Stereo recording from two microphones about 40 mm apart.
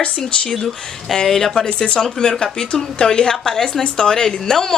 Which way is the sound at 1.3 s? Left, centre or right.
Centre.